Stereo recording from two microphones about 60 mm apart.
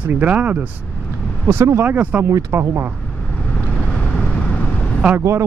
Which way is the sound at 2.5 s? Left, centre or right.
Right.